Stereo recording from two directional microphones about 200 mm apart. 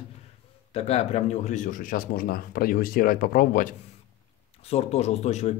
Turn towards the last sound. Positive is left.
turn(degrees=35)  # may be behind; listen again after turning